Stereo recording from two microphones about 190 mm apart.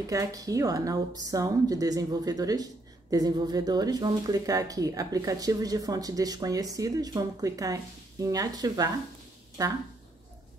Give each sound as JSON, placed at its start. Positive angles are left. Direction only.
{"t": 0.1, "sound": "a woman's voice", "side_deg": -20}